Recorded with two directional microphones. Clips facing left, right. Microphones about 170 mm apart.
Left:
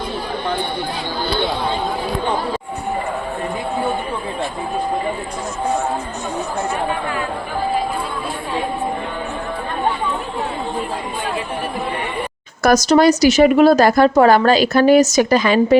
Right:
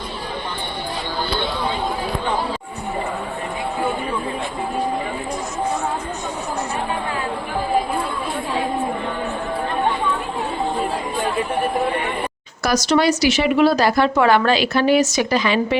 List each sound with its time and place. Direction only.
12.6 s speech: 45° left (ahead or behind)